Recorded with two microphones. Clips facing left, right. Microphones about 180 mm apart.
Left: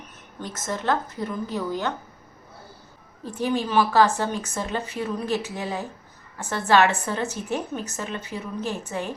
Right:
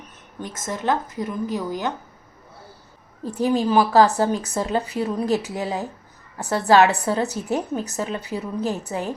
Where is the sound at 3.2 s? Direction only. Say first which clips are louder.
Right 5 dB; 40° right (ahead or behind).